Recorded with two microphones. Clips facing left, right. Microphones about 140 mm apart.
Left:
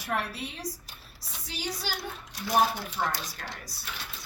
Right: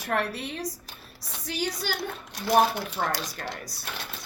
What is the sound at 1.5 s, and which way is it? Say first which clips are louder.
A woman's voice: right 5 dB; 50° right (ahead or behind).